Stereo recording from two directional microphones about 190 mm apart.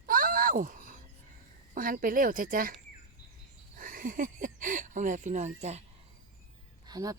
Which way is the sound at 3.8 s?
45° right (ahead or behind).